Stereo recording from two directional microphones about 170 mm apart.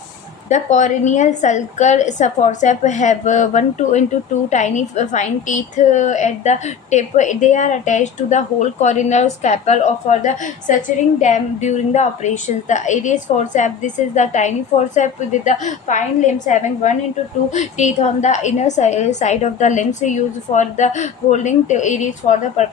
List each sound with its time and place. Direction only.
0.4 s a woman's voice: 45° left (ahead or behind)